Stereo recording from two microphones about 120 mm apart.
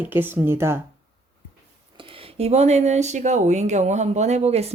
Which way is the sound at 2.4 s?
65° right (ahead or behind).